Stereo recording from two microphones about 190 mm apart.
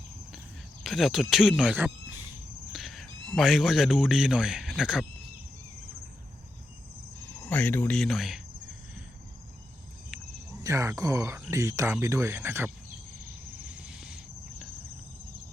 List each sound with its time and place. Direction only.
0.9 s a man's voice: centre (ahead or behind)
2.7 s a sound: centre (ahead or behind)
3.2 s a man's voice: centre (ahead or behind)
7.4 s speech: 10° left (ahead or behind)
10.6 s speech: 15° right (ahead or behind)
13.6 s a sound: 5° right (ahead or behind)